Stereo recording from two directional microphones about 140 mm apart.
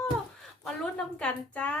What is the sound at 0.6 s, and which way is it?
A woman's voice, 10° left (ahead or behind).